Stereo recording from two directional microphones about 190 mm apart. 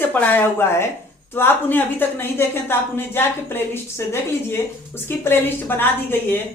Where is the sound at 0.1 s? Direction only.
10° left (ahead or behind).